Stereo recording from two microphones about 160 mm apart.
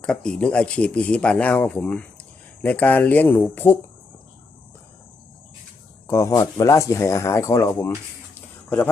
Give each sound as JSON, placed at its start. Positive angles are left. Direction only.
{"t": 0.0, "sound": "speech", "side_deg": 5}
{"t": 6.1, "sound": "speech", "side_deg": 20}
{"t": 8.4, "sound": "a sound", "side_deg": 15}